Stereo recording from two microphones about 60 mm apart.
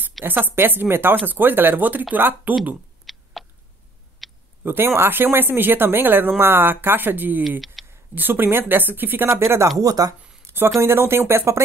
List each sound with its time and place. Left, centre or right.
0.2 s speech: right
3.1 s a sound: centre
4.6 s speech: right
7.8 s a sound: centre
8.1 s speech: right
9.4 s speech: right
9.8 s speech: right
10.4 s a sound: right
10.8 s speech: right